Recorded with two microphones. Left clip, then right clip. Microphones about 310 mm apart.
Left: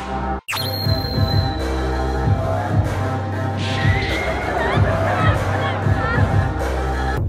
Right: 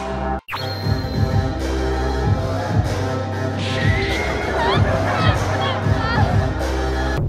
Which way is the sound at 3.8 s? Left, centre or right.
Centre.